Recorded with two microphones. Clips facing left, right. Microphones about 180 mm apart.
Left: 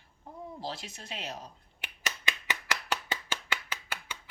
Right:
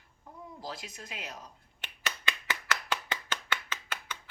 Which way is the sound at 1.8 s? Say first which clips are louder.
Even; 15° left (ahead or behind).